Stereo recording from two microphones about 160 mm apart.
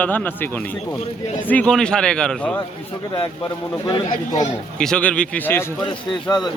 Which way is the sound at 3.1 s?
25° left (ahead or behind).